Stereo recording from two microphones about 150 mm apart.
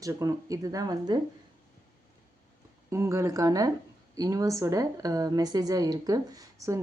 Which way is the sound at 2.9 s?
20° right (ahead or behind).